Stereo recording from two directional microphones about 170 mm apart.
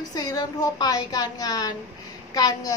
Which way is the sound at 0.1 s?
25° left (ahead or behind).